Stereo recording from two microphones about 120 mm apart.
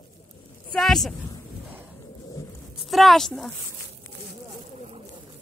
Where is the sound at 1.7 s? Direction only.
15° right (ahead or behind).